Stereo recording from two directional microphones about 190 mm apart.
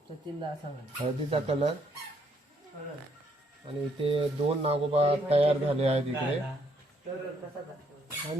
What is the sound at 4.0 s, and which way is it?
Speech, 30° right (ahead or behind).